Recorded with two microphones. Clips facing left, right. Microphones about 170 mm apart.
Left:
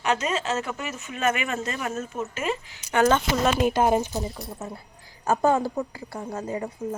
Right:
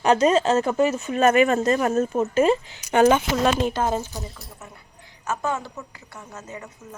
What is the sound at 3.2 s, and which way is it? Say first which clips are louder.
Speech: right 1 dB; centre (ahead or behind).